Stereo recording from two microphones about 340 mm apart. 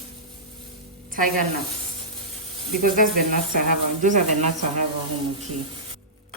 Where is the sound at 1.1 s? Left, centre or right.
Right.